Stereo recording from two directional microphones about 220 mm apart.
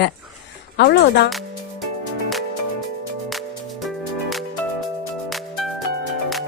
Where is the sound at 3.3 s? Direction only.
Centre (ahead or behind).